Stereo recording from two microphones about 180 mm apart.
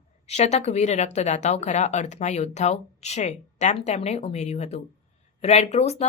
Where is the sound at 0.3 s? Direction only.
35° left (ahead or behind).